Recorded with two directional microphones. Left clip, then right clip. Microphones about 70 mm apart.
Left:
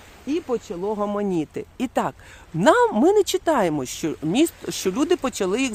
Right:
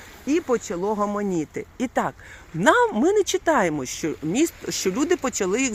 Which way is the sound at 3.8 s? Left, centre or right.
Left.